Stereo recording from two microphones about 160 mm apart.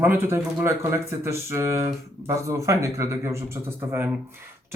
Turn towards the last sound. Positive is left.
turn(degrees=-15)  # may be behind; listen again after turning